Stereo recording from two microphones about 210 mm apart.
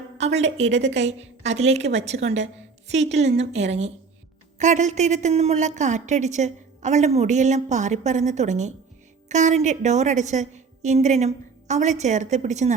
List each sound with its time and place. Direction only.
0.8 s a woman's voice: 30° right (ahead or behind)